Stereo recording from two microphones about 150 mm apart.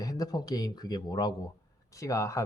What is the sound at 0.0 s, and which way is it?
Speech, 25° left (ahead or behind).